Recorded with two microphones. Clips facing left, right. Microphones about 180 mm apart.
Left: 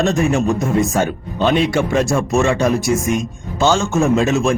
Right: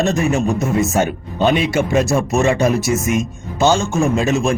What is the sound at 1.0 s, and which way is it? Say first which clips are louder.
Speech: right 1 dB; 15° right (ahead or behind).